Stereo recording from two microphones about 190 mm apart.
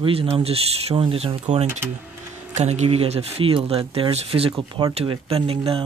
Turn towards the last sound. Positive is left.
turn(degrees=-30)  # may be behind; listen again after turning